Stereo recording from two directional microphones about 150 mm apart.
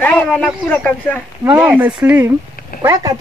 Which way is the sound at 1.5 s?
10° right (ahead or behind).